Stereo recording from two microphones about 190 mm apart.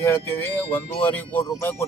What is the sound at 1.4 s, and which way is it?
Speech, 20° left (ahead or behind).